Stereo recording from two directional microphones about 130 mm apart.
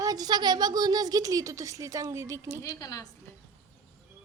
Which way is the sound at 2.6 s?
30° left (ahead or behind).